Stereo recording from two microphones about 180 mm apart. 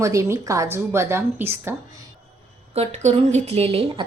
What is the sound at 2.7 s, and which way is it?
A woman's voice, 35° right (ahead or behind).